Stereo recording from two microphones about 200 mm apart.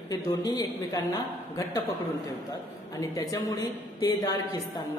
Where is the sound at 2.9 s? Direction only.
15° left (ahead or behind).